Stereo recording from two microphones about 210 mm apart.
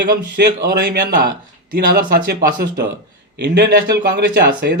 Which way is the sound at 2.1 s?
45° right (ahead or behind).